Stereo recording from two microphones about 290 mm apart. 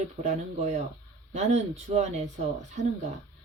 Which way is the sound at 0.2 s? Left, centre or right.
Right.